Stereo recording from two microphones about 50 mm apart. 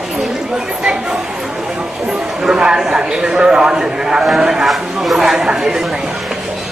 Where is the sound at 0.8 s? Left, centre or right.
Centre.